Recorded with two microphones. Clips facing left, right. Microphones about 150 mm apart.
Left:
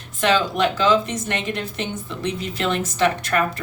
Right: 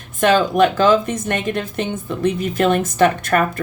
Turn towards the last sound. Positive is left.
turn(degrees=-50)  # may be behind; listen again after turning